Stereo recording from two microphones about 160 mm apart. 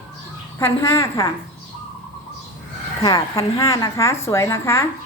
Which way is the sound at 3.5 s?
20° left (ahead or behind).